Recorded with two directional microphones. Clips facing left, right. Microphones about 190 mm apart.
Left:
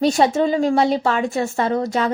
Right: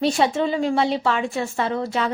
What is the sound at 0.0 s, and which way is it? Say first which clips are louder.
A woman's voice: left 3 dB; 40° left (ahead or behind).